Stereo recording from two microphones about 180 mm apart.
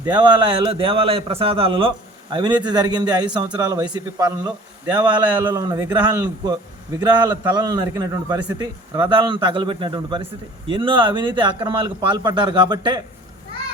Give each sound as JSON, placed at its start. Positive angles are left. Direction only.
{"t": 0.0, "sound": "a man's voice", "side_deg": -25}